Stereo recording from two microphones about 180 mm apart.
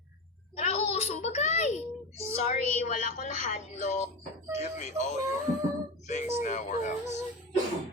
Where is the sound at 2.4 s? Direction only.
40° left (ahead or behind).